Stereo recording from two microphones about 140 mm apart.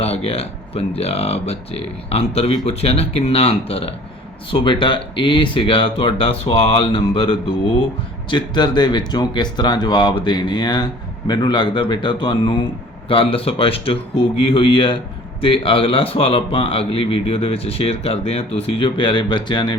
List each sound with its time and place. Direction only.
0.0 s a man's voice: 45° left (ahead or behind)